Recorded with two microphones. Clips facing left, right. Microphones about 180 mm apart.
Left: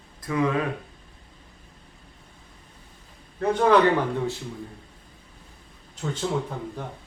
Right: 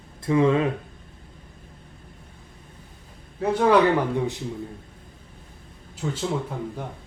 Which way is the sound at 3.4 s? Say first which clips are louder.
Right 1 dB; 5° right (ahead or behind).